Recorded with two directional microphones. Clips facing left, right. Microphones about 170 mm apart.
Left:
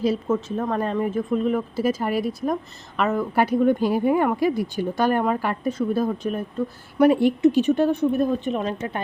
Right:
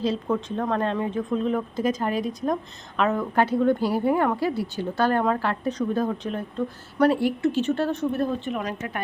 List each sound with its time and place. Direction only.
0.0 s speech: 10° left (ahead or behind)
8.5 s speech: 30° left (ahead or behind)